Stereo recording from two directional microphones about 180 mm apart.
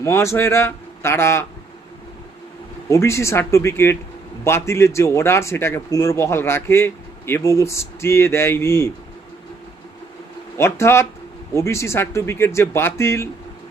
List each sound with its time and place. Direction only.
0.0 s a man's voice: 15° left (ahead or behind)
2.9 s a man's voice: 15° left (ahead or behind)
10.6 s a man's voice: 15° left (ahead or behind)